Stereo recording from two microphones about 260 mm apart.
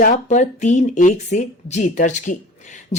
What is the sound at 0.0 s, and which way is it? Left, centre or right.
A woman's voice, left.